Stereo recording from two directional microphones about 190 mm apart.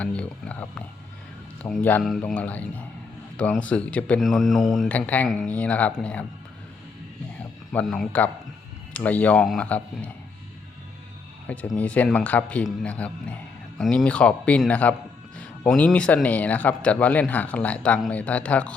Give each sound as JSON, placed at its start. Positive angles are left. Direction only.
{"t": 0.0, "sound": "a man's voice", "side_deg": 5}
{"t": 7.7, "sound": "a man's voice", "side_deg": 5}
{"t": 11.4, "sound": "a man's voice", "side_deg": 10}